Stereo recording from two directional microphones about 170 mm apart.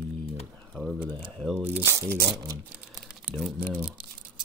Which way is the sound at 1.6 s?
15° right (ahead or behind).